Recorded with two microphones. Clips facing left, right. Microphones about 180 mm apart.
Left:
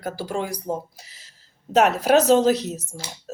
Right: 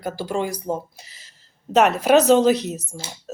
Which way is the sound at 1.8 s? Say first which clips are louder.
Right 2 dB; 5° left (ahead or behind).